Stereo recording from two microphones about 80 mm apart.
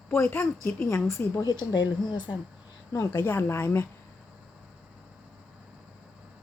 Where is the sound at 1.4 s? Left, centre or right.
Left.